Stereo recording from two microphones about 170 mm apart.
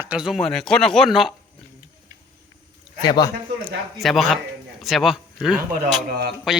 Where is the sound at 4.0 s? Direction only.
Centre (ahead or behind).